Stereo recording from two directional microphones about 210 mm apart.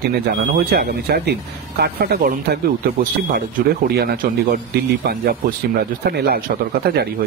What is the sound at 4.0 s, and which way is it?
Speech, 50° right (ahead or behind).